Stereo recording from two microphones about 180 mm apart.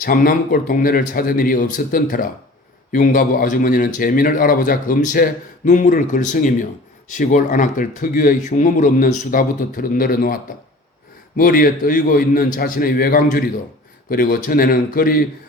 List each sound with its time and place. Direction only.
0.0 s a man's voice: 50° left (ahead or behind)